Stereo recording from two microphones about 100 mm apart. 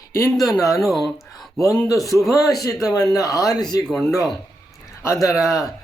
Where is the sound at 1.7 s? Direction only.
35° left (ahead or behind).